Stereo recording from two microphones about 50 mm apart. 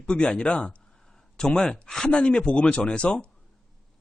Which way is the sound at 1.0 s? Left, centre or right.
Centre.